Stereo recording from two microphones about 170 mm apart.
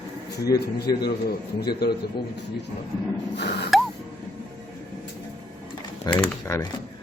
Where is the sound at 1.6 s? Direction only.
70° left (ahead or behind).